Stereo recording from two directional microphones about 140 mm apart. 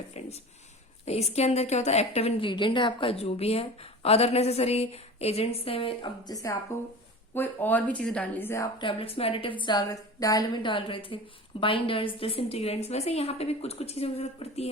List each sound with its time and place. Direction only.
0.1 s a woman's voice: 50° left (ahead or behind)
6.2 s speech: 25° left (ahead or behind)
7.3 s a woman's voice: 10° left (ahead or behind)
8.8 s a woman's voice: 40° left (ahead or behind)